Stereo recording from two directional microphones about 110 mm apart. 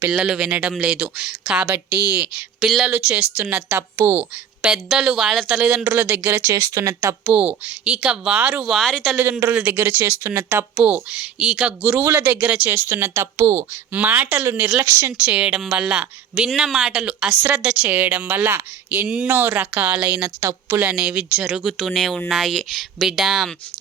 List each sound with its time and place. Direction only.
0.1 s speech: 10° right (ahead or behind)
2.6 s speech: centre (ahead or behind)
2.9 s speech: 10° right (ahead or behind)
4.7 s speech: 5° right (ahead or behind)
5.8 s speech: 20° right (ahead or behind)
7.3 s speech: 15° right (ahead or behind); by 9.1 s 5° left (ahead or behind)
9.5 s speech: 15° right (ahead or behind)
12.0 s speech: 25° right (ahead or behind)
12.3 s speech: 15° right (ahead or behind); by 13.7 s 30° right (ahead or behind)
13.9 s speech: 15° right (ahead or behind)
15.2 s speech: 10° right (ahead or behind)
19.3 s speech: 20° right (ahead or behind)
20.4 s speech: 25° right (ahead or behind)
20.8 s speech: 10° right (ahead or behind)